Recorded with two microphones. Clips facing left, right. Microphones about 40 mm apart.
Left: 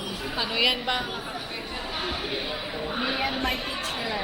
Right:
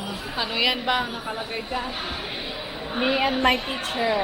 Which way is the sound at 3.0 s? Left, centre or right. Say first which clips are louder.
Right 7 dB; right.